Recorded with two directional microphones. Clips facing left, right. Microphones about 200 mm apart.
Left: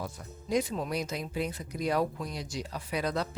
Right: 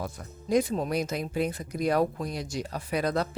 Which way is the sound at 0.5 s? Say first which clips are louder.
Right 4 dB; 45° right (ahead or behind).